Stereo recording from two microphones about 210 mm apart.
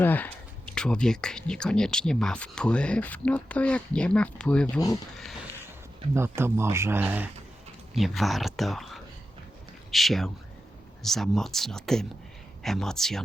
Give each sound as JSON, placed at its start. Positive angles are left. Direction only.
{"t": 0.0, "sound": "speech", "side_deg": 10}
{"t": 4.6, "sound": "speech", "side_deg": 15}
{"t": 6.1, "sound": "speech", "side_deg": -10}